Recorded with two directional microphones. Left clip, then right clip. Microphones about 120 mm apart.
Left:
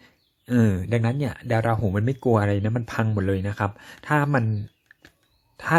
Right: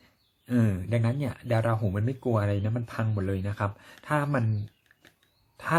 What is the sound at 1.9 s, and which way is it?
Speech, 45° left (ahead or behind).